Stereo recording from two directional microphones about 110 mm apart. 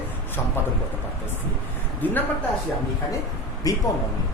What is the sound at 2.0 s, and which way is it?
Speech, 15° left (ahead or behind).